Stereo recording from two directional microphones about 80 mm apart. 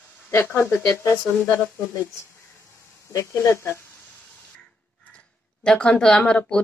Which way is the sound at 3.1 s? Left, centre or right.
Left.